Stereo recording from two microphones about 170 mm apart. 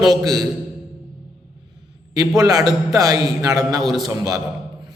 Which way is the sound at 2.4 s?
20° right (ahead or behind).